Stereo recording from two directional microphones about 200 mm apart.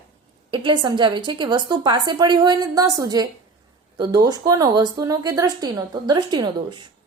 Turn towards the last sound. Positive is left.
turn(degrees=-20)  # may be behind; listen again after turning